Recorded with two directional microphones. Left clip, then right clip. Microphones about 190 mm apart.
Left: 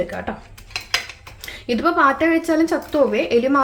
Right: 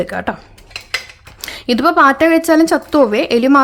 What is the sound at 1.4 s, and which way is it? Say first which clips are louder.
A woman's voice: right 6 dB; 50° right (ahead or behind).